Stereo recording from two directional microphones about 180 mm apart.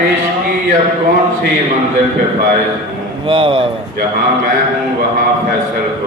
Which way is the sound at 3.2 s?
30° right (ahead or behind).